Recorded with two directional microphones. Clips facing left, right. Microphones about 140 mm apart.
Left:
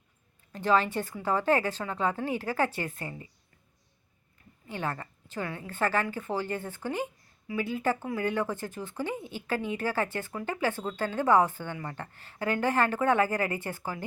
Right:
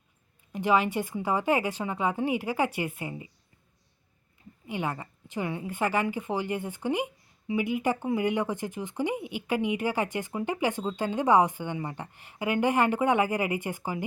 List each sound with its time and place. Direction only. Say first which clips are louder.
0.5 s a woman's voice: right 1 dB; 15° right (ahead or behind)
4.6 s a woman's voice: right 2 dB; 15° right (ahead or behind)